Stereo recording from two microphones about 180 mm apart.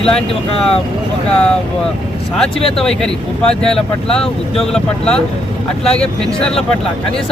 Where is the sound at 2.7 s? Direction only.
5° left (ahead or behind).